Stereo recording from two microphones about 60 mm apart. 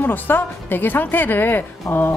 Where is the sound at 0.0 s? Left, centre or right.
Left.